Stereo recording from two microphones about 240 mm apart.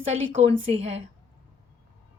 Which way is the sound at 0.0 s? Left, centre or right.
Right.